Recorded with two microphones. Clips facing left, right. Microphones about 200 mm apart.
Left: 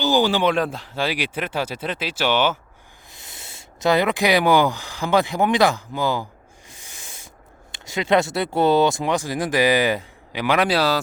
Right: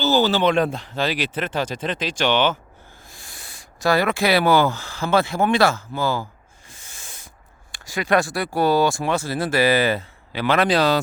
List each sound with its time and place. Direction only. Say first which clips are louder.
0.0 s speech: even; 15° left (ahead or behind)
3.1 s speech: left 3 dB; 20° left (ahead or behind)
7.7 s speech: left 1 dB; 20° left (ahead or behind); by 11.0 s 5° left (ahead or behind)